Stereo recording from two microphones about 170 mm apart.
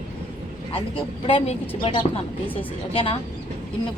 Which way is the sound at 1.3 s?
35° left (ahead or behind).